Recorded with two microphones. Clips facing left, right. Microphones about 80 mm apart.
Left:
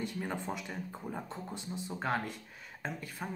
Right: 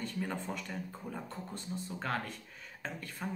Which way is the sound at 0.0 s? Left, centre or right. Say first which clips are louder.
Left 1 dB; centre.